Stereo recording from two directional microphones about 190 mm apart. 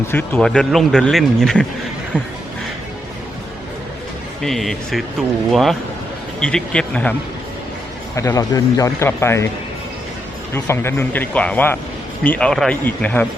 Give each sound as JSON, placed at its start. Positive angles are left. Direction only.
{"t": 0.1, "sound": "speech", "side_deg": 5}
{"t": 4.4, "sound": "speech", "side_deg": 0}
{"t": 8.1, "sound": "speech", "side_deg": 15}
{"t": 10.5, "sound": "speech", "side_deg": 15}